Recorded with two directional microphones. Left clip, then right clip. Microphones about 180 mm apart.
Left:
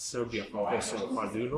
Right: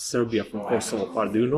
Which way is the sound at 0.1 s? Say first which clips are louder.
Right 10 dB; 45° right (ahead or behind).